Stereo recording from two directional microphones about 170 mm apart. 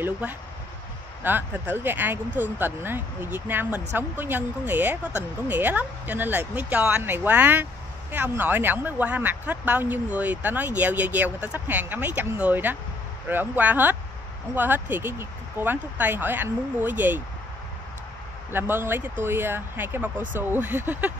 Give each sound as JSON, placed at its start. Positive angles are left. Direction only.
{"t": 0.0, "sound": "speech", "side_deg": -10}
{"t": 18.5, "sound": "speech", "side_deg": -15}